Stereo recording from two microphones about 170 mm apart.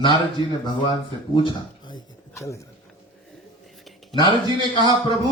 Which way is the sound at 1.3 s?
25° left (ahead or behind).